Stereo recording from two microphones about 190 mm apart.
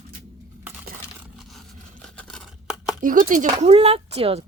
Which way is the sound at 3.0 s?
45° right (ahead or behind).